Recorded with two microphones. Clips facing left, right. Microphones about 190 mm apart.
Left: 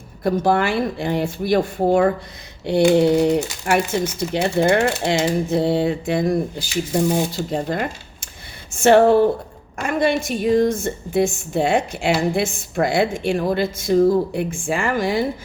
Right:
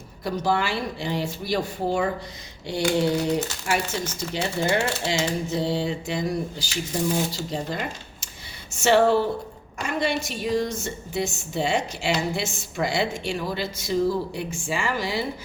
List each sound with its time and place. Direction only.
0.2 s a woman's voice: 55° left (ahead or behind)